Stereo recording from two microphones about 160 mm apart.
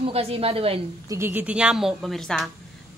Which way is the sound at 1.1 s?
15° right (ahead or behind).